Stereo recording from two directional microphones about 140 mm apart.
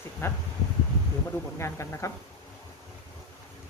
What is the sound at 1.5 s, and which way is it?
Speech, 20° left (ahead or behind).